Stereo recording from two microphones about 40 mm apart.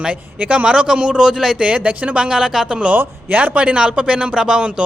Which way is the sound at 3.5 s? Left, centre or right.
Right.